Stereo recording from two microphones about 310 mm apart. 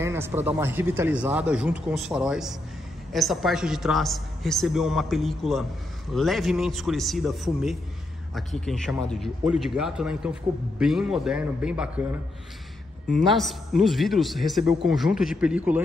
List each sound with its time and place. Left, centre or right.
0.0 s a man's voice: centre
13.3 s a man's voice: centre